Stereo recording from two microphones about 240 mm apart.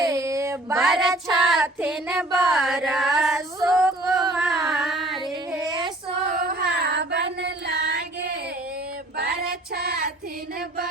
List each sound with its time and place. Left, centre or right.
0.0 s a sound: centre
0.8 s child singing: centre
2.8 s female singing: centre
3.7 s a sound: centre
4.6 s singing: centre
5.5 s child singing: centre
6.3 s child singing: right